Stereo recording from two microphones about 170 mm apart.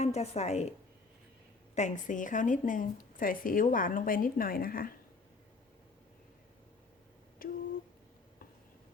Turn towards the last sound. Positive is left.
turn(degrees=55)  # may be behind; listen again after turning